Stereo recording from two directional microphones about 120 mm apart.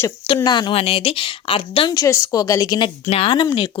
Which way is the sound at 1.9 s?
25° left (ahead or behind).